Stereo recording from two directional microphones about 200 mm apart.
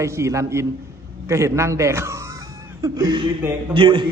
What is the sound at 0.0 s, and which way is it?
A man's voice, 15° right (ahead or behind).